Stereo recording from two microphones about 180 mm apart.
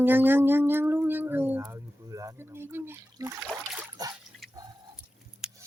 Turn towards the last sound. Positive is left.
turn(degrees=-5)  # may be behind; listen again after turning